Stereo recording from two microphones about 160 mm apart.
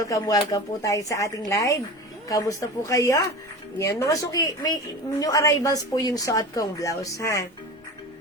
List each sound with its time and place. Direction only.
0.0 s speech: 20° left (ahead or behind)